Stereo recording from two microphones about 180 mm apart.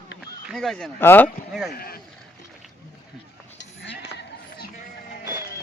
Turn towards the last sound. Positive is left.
turn(degrees=70)  # may be behind; listen again after turning